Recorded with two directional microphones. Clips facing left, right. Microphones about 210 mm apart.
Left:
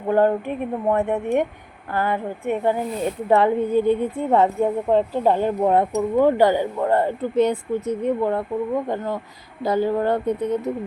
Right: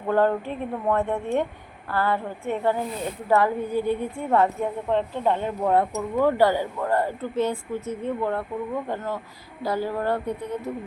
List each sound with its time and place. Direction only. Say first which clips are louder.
0.1 s a woman's voice: left 3 dB; 15° left (ahead or behind)
4.9 s speech: left 3 dB; 35° left (ahead or behind)
5.6 s a woman's voice: left 2 dB; 20° left (ahead or behind)
9.6 s a woman's voice: left 5 dB; 20° left (ahead or behind)